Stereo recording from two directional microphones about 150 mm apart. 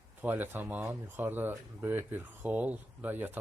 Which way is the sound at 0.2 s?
10° right (ahead or behind).